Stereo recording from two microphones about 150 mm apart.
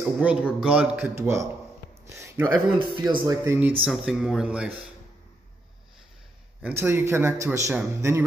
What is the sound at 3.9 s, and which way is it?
Speech, centre (ahead or behind).